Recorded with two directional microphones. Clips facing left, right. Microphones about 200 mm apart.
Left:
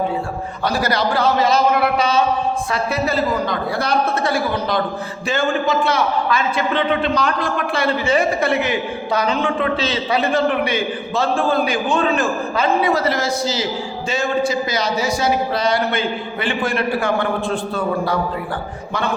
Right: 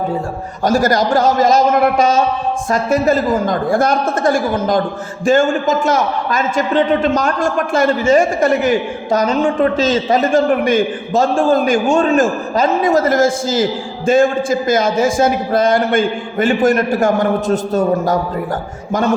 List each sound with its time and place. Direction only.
0.6 s a man's voice: 45° right (ahead or behind)